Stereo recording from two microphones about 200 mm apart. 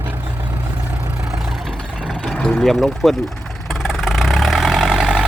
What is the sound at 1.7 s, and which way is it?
Vehicle, centre (ahead or behind).